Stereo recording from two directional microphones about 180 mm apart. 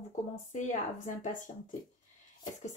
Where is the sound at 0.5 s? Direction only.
40° left (ahead or behind).